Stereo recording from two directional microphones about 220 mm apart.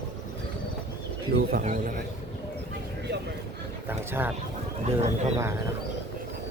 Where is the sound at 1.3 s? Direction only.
40° right (ahead or behind).